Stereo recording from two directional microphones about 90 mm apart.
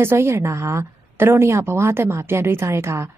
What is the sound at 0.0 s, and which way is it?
A woman's voice, 25° right (ahead or behind).